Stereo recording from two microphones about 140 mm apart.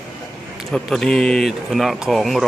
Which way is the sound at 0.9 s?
5° left (ahead or behind).